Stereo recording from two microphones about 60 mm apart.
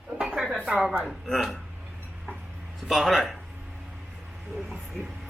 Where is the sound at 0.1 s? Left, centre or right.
Right.